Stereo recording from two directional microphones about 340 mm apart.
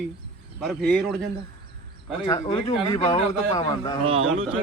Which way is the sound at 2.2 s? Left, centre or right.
Centre.